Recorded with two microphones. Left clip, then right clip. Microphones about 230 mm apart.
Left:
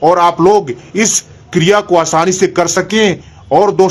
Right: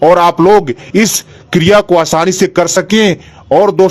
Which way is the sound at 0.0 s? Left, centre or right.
Right.